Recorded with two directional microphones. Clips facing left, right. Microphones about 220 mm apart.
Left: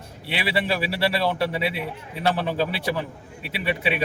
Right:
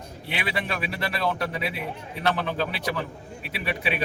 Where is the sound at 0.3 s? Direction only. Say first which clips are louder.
Left 5 dB; 30° left (ahead or behind).